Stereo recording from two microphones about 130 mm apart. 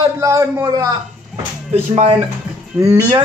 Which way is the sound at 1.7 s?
50° right (ahead or behind).